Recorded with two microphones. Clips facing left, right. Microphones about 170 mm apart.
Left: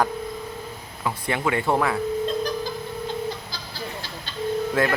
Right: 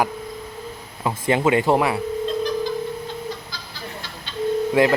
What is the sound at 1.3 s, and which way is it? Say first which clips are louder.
Speech: right 6 dB; 20° right (ahead or behind).